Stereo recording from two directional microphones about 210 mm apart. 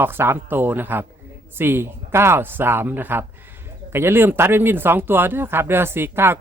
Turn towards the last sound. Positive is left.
turn(degrees=-10)  # may be behind; listen again after turning